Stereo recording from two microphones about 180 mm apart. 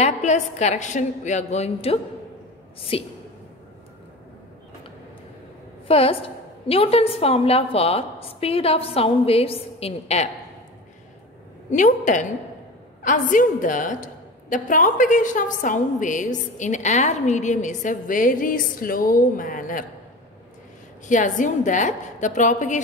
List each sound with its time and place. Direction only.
0.0 s a woman's voice: 40° left (ahead or behind)
5.9 s a woman's voice: 30° left (ahead or behind)
11.7 s a woman's voice: 45° left (ahead or behind)
21.1 s a woman's voice: 45° left (ahead or behind)